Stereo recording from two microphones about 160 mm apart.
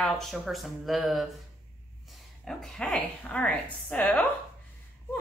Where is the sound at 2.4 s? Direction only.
5° left (ahead or behind).